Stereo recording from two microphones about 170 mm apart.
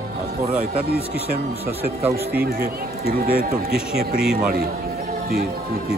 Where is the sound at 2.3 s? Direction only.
65° right (ahead or behind).